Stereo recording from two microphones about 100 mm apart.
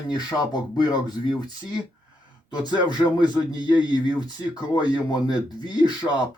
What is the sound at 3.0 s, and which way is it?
Speech, 45° left (ahead or behind).